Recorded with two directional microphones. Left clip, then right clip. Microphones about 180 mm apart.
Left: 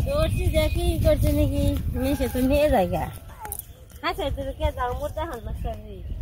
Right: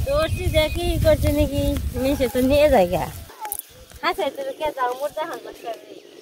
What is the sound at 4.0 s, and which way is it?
Speech, 35° right (ahead or behind).